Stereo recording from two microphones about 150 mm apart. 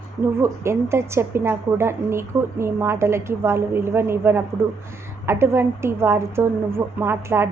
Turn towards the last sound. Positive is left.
turn(degrees=-15)  # may be behind; listen again after turning